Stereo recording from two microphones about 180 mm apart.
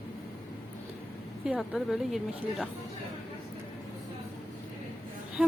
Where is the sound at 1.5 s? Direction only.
5° right (ahead or behind).